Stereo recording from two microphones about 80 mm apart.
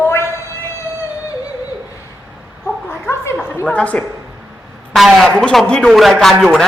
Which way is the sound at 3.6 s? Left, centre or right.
Centre.